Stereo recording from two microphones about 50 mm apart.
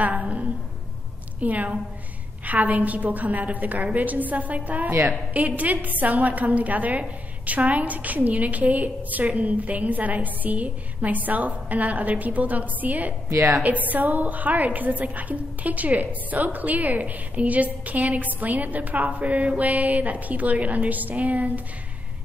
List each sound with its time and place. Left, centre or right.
0.0 s a woman's voice: right